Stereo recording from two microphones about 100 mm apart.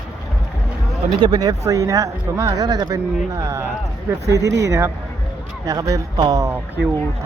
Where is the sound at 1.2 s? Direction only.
40° right (ahead or behind).